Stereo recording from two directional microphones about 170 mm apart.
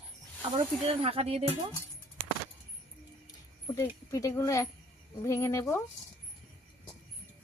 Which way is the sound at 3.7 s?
20° left (ahead or behind).